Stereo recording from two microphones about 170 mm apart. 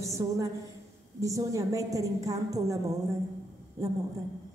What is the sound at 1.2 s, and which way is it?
A woman's voice, 20° right (ahead or behind).